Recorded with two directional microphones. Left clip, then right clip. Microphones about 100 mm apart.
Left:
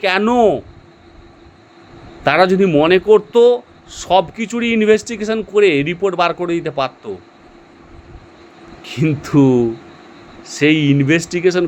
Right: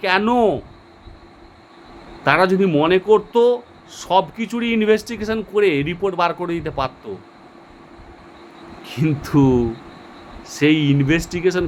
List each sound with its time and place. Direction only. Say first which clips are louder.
0.0 s speech: left 3 dB; 45° left (ahead or behind)
2.2 s speech: left 3 dB; 45° left (ahead or behind)
8.8 s a sound: left 5 dB; 40° left (ahead or behind)
9.0 s speech: left 3 dB; 35° left (ahead or behind)